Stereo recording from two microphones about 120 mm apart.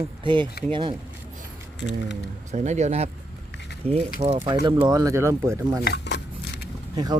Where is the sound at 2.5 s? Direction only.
75° right (ahead or behind).